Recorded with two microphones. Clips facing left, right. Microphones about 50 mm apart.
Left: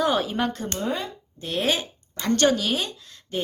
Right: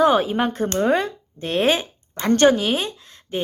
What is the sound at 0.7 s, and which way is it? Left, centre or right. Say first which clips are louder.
Speech: right 9 dB; right.